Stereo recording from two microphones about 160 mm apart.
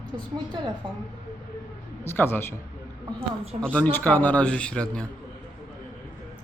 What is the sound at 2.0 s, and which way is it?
Speech, 15° left (ahead or behind).